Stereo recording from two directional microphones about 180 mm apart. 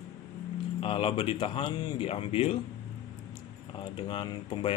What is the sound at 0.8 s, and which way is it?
Speech, 30° left (ahead or behind).